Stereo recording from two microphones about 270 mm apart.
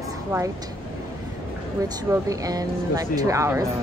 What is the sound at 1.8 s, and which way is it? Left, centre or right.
Speech, centre.